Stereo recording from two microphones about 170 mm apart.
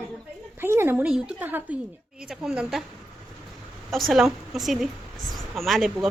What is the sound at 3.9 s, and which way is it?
A woman's voice, centre (ahead or behind).